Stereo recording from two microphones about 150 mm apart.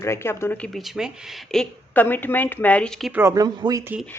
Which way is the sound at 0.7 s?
Centre (ahead or behind).